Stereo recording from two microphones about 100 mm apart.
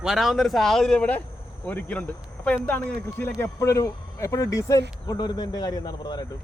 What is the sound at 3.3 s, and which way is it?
Speech, 30° left (ahead or behind).